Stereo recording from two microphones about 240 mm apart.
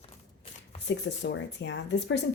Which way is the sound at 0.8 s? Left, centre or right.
Left.